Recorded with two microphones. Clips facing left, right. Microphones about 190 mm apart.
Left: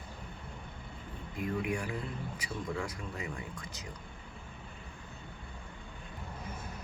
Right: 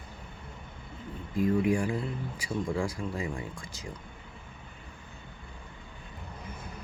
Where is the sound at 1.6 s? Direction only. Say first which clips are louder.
Right 8 dB; 30° right (ahead or behind).